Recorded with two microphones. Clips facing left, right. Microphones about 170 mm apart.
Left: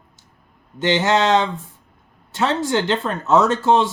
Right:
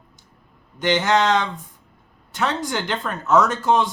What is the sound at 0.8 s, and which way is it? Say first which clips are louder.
Speech: left 1 dB; 20° left (ahead or behind).